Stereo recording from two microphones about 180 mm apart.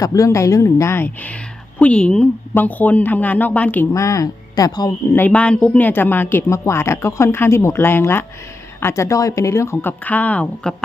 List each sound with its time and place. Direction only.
0.0 s speech: 20° left (ahead or behind)
5.2 s speech: 5° left (ahead or behind)